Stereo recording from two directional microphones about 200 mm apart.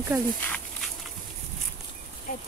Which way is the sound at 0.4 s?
5° left (ahead or behind).